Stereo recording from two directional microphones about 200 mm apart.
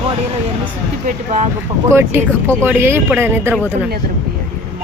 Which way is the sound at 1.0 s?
35° right (ahead or behind).